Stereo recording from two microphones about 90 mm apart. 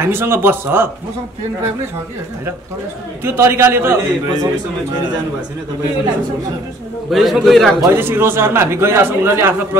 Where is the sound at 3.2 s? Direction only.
25° right (ahead or behind).